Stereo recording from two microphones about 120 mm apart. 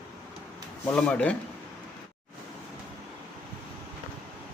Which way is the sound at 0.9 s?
10° left (ahead or behind).